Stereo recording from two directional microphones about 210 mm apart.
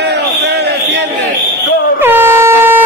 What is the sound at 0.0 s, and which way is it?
Basketball bounce, 55° right (ahead or behind).